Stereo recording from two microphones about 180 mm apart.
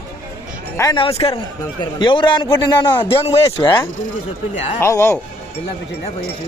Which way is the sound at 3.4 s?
15° left (ahead or behind).